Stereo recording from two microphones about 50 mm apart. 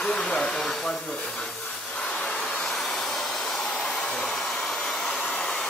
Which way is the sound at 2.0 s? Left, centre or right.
Centre.